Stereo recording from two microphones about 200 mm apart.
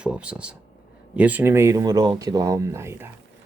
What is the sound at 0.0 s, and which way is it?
Speech, 5° right (ahead or behind).